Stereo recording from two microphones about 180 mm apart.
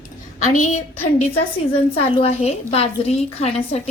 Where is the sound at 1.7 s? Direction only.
35° left (ahead or behind).